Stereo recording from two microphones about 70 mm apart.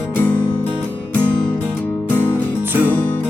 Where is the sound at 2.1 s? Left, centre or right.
Left.